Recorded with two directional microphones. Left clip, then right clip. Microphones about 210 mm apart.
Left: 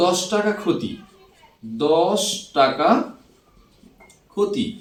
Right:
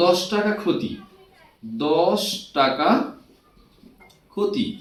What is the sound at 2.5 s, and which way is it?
Speech, 20° left (ahead or behind).